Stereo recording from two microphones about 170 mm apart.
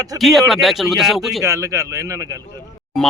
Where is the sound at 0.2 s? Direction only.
Centre (ahead or behind).